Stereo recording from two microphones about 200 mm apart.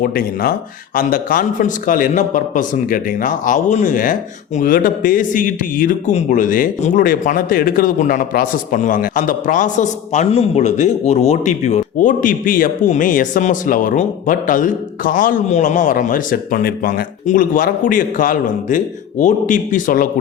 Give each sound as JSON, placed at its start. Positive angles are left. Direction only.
{"t": 0.0, "sound": "a man's voice", "side_deg": 45}